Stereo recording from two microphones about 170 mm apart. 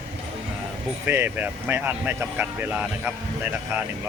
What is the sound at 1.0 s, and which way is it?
Speech, 10° right (ahead or behind).